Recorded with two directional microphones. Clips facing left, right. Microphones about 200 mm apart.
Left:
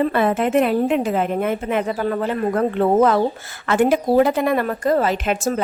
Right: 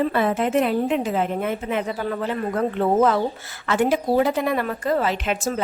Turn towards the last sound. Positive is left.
turn(degrees=50)  # may be behind; listen again after turning